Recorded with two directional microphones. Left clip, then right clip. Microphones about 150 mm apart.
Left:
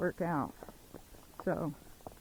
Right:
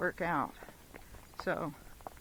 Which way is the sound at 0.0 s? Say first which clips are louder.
Right 1 dB; 30° right (ahead or behind).